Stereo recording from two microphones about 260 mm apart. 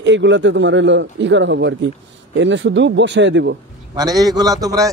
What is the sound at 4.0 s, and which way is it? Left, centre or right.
Speech, centre.